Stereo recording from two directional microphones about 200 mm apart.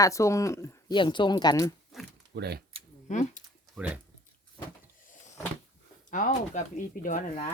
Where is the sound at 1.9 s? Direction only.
Centre (ahead or behind).